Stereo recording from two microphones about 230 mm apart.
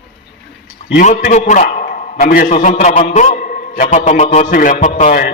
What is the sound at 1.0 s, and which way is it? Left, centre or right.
A man's voice, left.